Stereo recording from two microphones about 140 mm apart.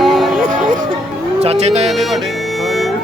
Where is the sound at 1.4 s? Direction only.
50° right (ahead or behind).